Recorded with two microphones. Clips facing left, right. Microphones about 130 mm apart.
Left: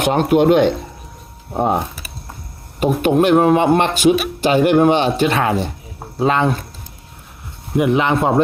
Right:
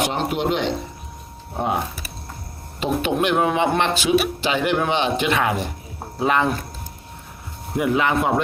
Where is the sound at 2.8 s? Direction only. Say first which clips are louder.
Left 7 dB; 45° left (ahead or behind); by 6.6 s 25° left (ahead or behind).